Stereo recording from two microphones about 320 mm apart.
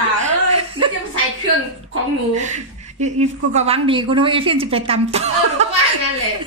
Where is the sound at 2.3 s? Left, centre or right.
Right.